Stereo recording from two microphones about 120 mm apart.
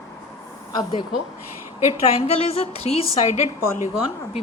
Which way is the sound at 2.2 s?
60° left (ahead or behind).